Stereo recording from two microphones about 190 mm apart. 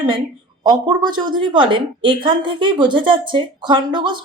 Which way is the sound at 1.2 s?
25° right (ahead or behind).